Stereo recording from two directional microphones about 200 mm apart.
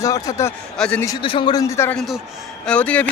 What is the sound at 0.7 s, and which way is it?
Speech, 5° left (ahead or behind).